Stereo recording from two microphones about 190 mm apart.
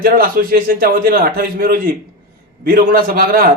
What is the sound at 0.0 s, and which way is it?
Speech, 50° right (ahead or behind).